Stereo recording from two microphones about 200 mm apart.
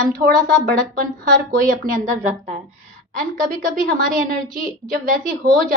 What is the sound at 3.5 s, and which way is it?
A woman's voice, 40° right (ahead or behind).